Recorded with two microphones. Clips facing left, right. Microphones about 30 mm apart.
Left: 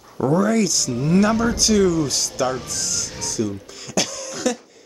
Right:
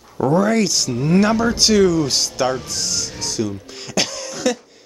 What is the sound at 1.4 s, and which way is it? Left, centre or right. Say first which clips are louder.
Speech: right 3 dB; right.